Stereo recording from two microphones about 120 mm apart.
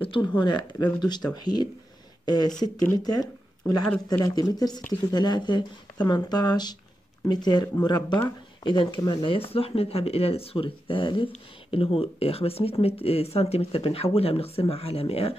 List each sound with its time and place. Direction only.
0.0 s speech: 45° left (ahead or behind)
12.0 s speech: 55° left (ahead or behind)